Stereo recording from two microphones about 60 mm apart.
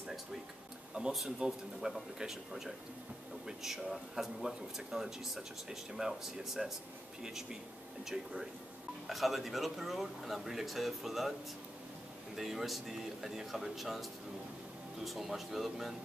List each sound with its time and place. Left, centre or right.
1.0 s speech: centre
8.0 s speech: centre
12.4 s speech: centre
15.0 s speech: centre